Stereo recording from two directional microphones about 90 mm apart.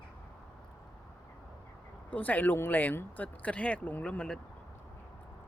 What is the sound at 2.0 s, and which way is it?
Speech, 20° left (ahead or behind).